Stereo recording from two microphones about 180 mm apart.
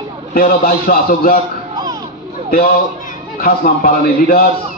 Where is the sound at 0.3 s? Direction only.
55° left (ahead or behind).